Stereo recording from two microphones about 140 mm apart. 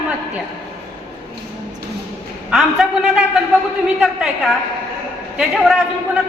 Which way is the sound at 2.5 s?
5° right (ahead or behind).